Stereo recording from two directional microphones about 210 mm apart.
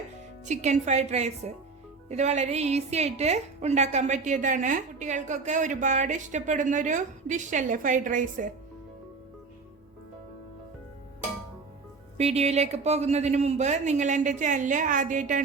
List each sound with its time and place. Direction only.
0.4 s a woman's voice: 35° right (ahead or behind)
12.1 s a woman's voice: 30° right (ahead or behind)